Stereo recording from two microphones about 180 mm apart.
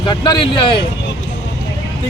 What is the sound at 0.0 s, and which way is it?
Speech, 25° left (ahead or behind).